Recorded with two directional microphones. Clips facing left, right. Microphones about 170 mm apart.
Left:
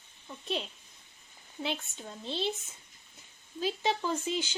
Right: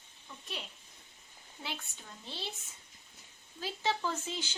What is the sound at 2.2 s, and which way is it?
Speech, 20° left (ahead or behind).